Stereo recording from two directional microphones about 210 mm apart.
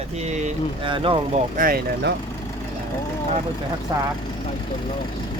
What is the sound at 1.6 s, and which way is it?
Speech, 45° right (ahead or behind).